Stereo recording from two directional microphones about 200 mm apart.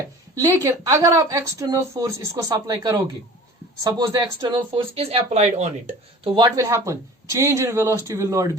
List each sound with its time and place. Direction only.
0.3 s speech: 15° right (ahead or behind)
6.6 s speech: 15° right (ahead or behind)